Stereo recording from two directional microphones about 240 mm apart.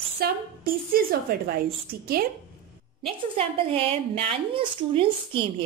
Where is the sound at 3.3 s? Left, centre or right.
Right.